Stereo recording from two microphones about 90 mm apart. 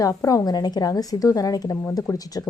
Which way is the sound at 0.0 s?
40° left (ahead or behind).